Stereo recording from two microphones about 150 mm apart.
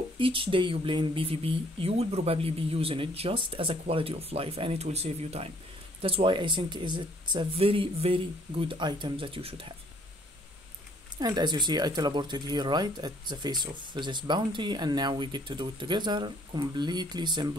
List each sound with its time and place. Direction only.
0.2 s speech: 35° right (ahead or behind)
11.1 s speech: 30° right (ahead or behind)